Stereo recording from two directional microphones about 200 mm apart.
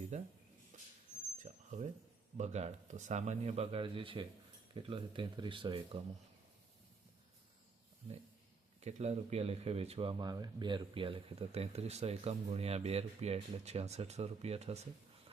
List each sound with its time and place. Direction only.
0.1 s speech: 35° right (ahead or behind)
0.7 s vehicle: 35° right (ahead or behind)
1.4 s a sound: 35° right (ahead or behind)
2.4 s speech: 35° right (ahead or behind)
8.8 s speech: 35° right (ahead or behind)